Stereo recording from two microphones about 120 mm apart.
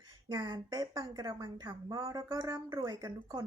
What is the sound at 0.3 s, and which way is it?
A woman's voice, 35° right (ahead or behind).